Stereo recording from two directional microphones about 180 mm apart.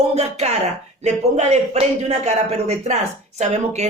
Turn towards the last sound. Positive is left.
turn(degrees=-40)  # may be behind; listen again after turning